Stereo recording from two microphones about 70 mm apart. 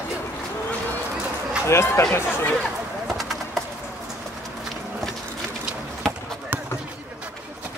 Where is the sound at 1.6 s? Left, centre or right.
Left.